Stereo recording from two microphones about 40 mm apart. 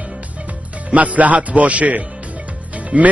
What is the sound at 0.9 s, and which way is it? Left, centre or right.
A man's voice, right.